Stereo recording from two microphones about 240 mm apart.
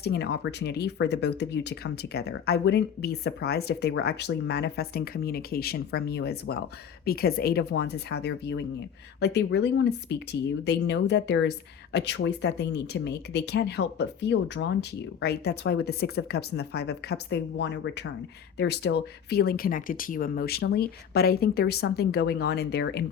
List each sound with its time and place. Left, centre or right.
0.0 s speech: left